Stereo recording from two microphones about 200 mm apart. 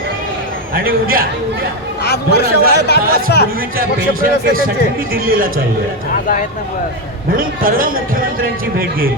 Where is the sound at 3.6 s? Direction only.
45° right (ahead or behind).